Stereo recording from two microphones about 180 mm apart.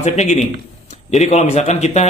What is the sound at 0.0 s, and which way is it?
A man's voice, 40° left (ahead or behind).